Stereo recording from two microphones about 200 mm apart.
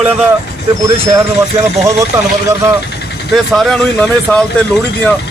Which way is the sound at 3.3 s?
Centre (ahead or behind).